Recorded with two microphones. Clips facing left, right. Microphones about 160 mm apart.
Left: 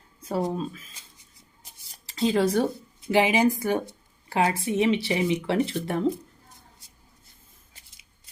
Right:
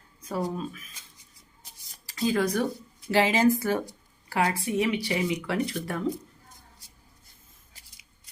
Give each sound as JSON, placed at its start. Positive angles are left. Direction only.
{"t": 0.2, "sound": "speech", "side_deg": 25}
{"t": 2.0, "sound": "speech", "side_deg": 25}
{"t": 3.1, "sound": "speech", "side_deg": 15}